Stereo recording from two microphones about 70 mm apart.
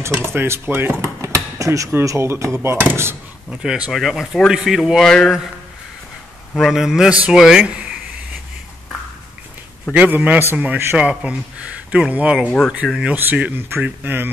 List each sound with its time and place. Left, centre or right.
0.0 s speech: right
3.4 s speech: centre
3.9 s speech: centre
5.0 s speech: centre
6.6 s speech: centre
7.6 s a sound: centre
9.9 s a man's voice: right
11.0 s speech: centre
12.4 s speech: centre
12.8 s speech: centre
13.1 s a man's voice: right